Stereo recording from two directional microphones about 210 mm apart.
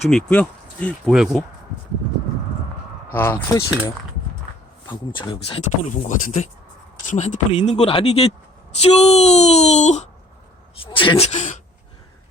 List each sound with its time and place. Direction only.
0.0 s speech: 5° left (ahead or behind)
3.1 s speech: 10° left (ahead or behind)
4.9 s speech: 25° left (ahead or behind)